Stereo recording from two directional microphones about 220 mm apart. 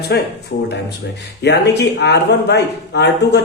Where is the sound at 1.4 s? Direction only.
50° left (ahead or behind).